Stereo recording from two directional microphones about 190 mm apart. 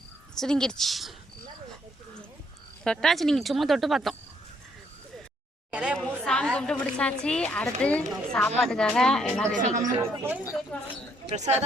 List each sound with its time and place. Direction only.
0.3 s a woman's voice: 5° left (ahead or behind)
2.8 s a woman's voice: 5° left (ahead or behind)
5.7 s a woman's voice: 5° right (ahead or behind)
9.6 s speech: 40° right (ahead or behind)
10.0 s speech: 10° right (ahead or behind)
11.3 s speech: 35° right (ahead or behind)